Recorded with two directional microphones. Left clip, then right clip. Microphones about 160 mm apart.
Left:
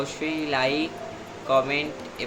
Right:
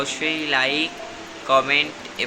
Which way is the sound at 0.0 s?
5° left (ahead or behind).